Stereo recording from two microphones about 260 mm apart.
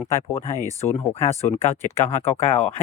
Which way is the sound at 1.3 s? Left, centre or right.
Left.